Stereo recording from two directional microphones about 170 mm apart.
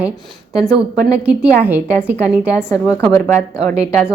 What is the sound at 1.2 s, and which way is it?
A woman's voice, 10° right (ahead or behind).